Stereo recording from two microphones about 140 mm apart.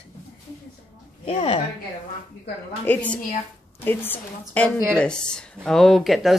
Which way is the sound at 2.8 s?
10° left (ahead or behind).